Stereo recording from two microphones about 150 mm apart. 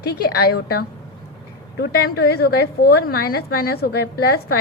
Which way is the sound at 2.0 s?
90° left.